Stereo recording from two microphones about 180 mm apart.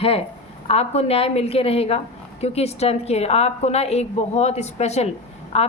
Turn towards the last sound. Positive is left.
turn(degrees=35)  # may be behind; listen again after turning